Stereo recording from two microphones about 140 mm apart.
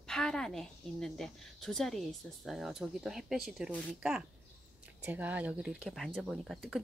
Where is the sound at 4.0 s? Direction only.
5° right (ahead or behind).